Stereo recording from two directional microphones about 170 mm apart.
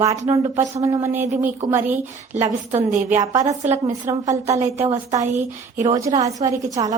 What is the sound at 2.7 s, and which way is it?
Speech, 40° right (ahead or behind).